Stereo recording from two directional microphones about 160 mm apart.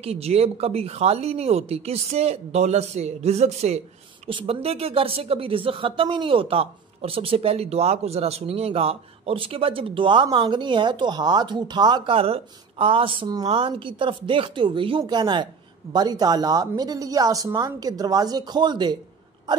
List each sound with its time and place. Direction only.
0.0 s speech: 40° right (ahead or behind)